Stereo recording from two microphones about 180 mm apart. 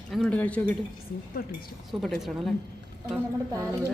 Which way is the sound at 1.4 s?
55° left (ahead or behind).